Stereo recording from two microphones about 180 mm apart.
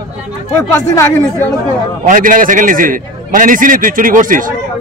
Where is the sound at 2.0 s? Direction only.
50° right (ahead or behind).